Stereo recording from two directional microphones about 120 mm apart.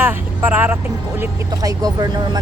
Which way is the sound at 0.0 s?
15° right (ahead or behind).